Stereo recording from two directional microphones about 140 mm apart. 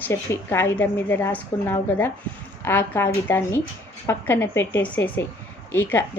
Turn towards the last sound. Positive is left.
turn(degrees=15)  # may be behind; listen again after turning